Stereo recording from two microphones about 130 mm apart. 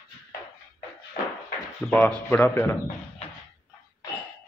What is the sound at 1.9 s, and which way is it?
Speech, 10° left (ahead or behind).